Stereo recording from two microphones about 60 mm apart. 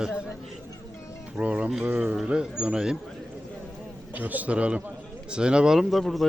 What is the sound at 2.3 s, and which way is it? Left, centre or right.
Speech, centre.